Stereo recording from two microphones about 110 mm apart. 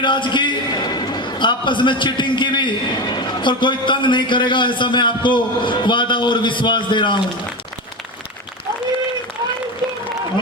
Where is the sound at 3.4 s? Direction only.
45° left (ahead or behind).